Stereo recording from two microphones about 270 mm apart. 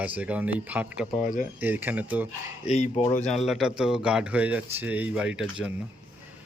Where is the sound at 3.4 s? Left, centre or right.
Centre.